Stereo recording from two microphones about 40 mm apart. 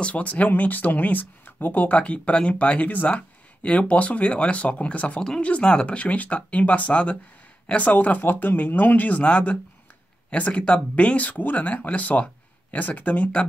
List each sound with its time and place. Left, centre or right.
0.1 s speech: left
0.5 s speech: left
2.0 s speech: left
9.2 s speech: left